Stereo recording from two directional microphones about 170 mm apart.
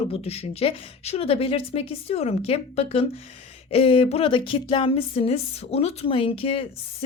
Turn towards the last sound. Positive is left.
turn(degrees=35)  # may be behind; listen again after turning